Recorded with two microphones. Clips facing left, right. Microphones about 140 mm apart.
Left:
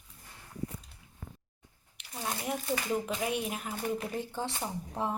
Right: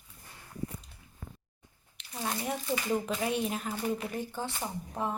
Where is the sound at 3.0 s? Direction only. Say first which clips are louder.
Right 2 dB; 10° left (ahead or behind).